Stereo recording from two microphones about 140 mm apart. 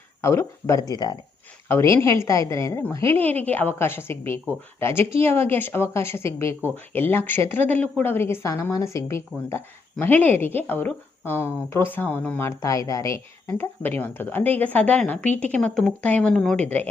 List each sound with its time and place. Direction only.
0.2 s a woman's voice: 20° left (ahead or behind)
1.6 s a woman's voice: 15° left (ahead or behind)